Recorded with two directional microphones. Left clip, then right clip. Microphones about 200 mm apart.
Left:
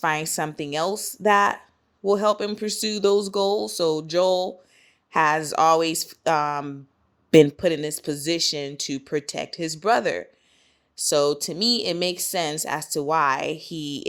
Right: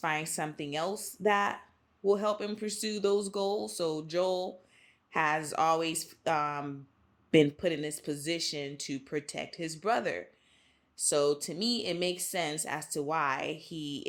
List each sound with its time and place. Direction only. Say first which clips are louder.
0.0 s speech: left 8 dB; 40° left (ahead or behind)